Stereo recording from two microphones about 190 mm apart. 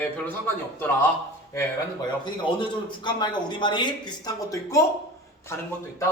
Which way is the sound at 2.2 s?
25° left (ahead or behind).